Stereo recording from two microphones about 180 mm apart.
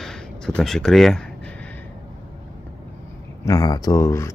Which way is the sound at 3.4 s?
20° left (ahead or behind).